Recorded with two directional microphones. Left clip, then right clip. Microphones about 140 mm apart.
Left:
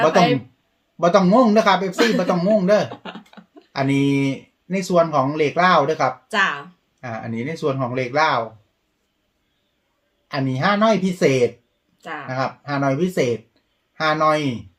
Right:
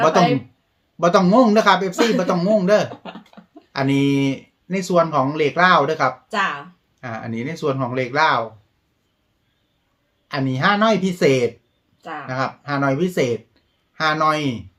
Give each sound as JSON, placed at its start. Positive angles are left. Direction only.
{"t": 0.0, "sound": "speech", "side_deg": -15}
{"t": 2.9, "sound": "speech", "side_deg": 40}
{"t": 3.7, "sound": "speech", "side_deg": -15}
{"t": 6.3, "sound": "speech", "side_deg": 35}
{"t": 7.0, "sound": "speech", "side_deg": -15}
{"t": 10.2, "sound": "speech", "side_deg": -10}
{"t": 11.9, "sound": "speech", "side_deg": 35}
{"t": 12.2, "sound": "speech", "side_deg": -15}